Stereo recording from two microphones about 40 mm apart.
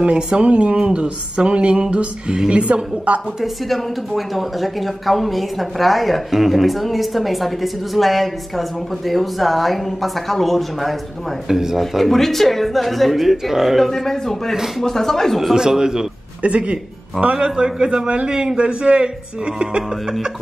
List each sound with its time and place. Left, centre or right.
0.0 s a woman's voice: right
3.6 s a woman's voice: centre
11.4 s a man's voice: centre
11.9 s a woman's voice: centre
15.5 s a man's voice: centre
16.4 s a woman's voice: right